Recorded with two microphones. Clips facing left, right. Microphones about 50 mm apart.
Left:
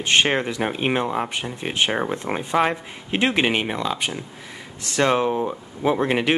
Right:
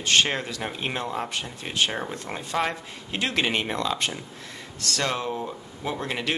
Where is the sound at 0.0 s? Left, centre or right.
Left.